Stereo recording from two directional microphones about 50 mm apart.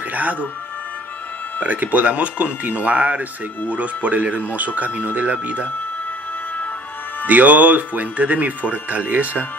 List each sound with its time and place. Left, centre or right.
0.1 s music: right
1.6 s speech: right
7.2 s speech: right